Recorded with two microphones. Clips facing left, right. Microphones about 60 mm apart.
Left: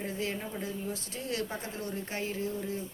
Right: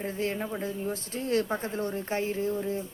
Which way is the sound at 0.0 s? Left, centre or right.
Right.